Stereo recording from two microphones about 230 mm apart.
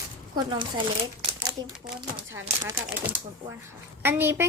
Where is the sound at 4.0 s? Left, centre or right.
Centre.